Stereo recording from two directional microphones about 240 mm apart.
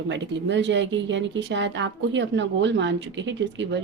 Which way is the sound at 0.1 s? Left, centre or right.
Right.